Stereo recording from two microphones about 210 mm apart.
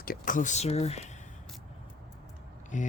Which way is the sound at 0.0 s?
40° left (ahead or behind).